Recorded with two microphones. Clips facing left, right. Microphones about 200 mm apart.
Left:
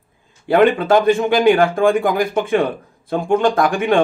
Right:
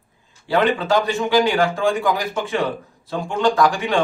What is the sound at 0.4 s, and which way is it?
A man's voice, 55° left (ahead or behind).